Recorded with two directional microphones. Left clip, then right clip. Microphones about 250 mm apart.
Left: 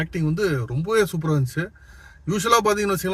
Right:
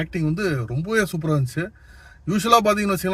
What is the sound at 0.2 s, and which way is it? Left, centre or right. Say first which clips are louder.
Speech: left 1 dB; centre.